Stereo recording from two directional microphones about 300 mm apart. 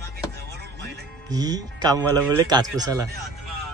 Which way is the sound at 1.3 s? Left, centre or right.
Centre.